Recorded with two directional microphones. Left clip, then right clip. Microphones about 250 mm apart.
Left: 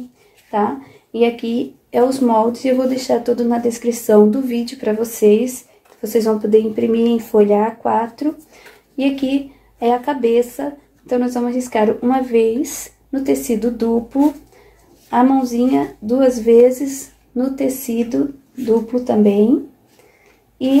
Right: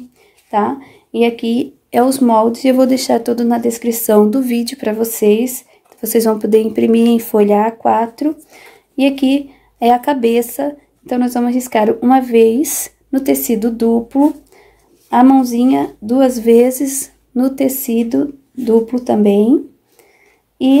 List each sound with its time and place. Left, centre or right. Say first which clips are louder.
0.5 s speech: right 3 dB; right